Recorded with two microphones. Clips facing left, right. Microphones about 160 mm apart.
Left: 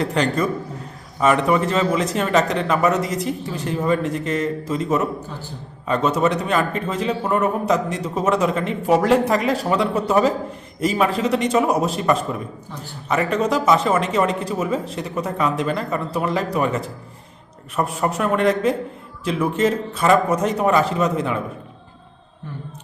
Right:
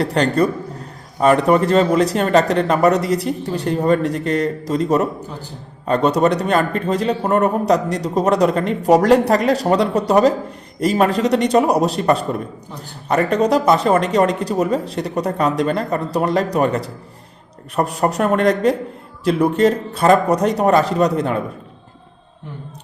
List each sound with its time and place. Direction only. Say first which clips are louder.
0.0 s speech: right 4 dB; 35° right (ahead or behind)